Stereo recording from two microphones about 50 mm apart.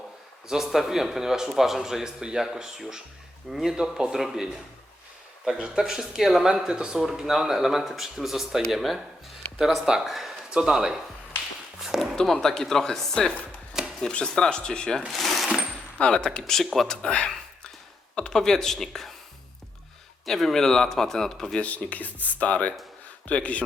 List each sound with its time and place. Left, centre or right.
0.4 s a man's voice: centre
5.5 s a man's voice: centre
11.9 s speech: centre
13.7 s chopping: centre
14.1 s speech: centre
15.1 s coin: centre
16.0 s a man's voice: centre
18.1 s speech: centre
20.2 s speech: centre
21.6 s speech: left